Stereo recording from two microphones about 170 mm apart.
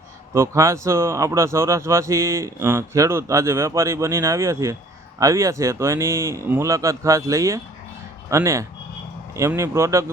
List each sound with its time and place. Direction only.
0.3 s speech: 15° right (ahead or behind)